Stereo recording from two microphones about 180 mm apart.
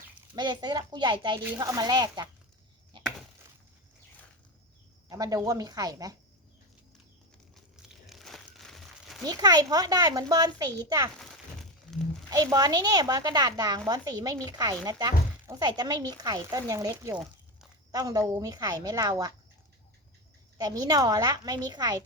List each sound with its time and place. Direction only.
0.3 s speech: 25° right (ahead or behind)
2.9 s chop: 25° right (ahead or behind)
5.0 s speech: 20° right (ahead or behind)
7.5 s crumpling: centre (ahead or behind)
9.2 s speech: 20° right (ahead or behind)
11.2 s a sound: centre (ahead or behind)
12.3 s speech: 20° right (ahead or behind)
20.6 s speech: 20° right (ahead or behind)